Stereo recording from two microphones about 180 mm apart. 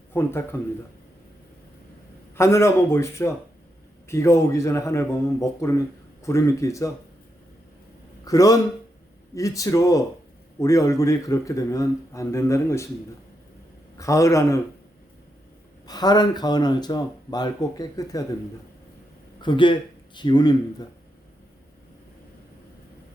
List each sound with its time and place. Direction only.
0.1 s a man's voice: 15° left (ahead or behind)
2.3 s a man's voice: 15° left (ahead or behind)
8.2 s a man's voice: 20° left (ahead or behind)
13.9 s a man's voice: 15° left (ahead or behind)
15.9 s speech: 20° left (ahead or behind)
19.4 s speech: 25° left (ahead or behind)